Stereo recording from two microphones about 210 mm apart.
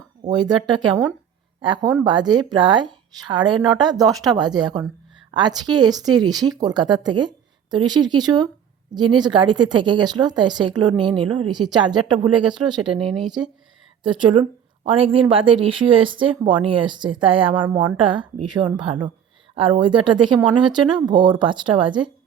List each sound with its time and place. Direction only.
0.3 s speech: 20° right (ahead or behind)
14.0 s speech: 25° right (ahead or behind)